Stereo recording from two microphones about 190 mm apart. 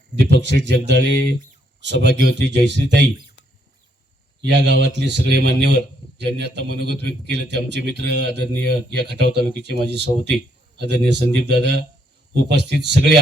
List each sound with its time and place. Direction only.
0.6 s speech: 65° right (ahead or behind)
4.4 s speech: 65° right (ahead or behind)